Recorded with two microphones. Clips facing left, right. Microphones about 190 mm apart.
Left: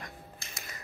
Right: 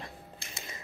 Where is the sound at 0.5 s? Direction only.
25° right (ahead or behind).